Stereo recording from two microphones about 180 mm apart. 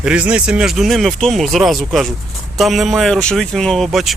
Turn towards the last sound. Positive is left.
turn(degrees=0)  # may be behind; listen again after turning